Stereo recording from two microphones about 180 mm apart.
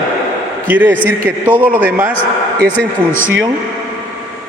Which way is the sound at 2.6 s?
10° left (ahead or behind).